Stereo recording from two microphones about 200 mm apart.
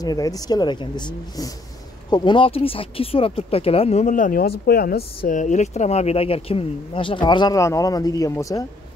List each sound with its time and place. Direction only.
0.0 s speech: 20° left (ahead or behind)